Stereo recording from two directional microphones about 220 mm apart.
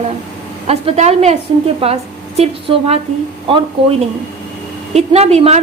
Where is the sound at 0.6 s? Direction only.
30° right (ahead or behind).